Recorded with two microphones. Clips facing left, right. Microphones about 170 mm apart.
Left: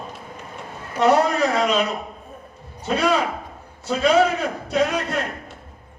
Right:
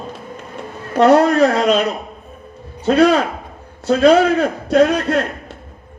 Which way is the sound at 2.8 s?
70° right (ahead or behind).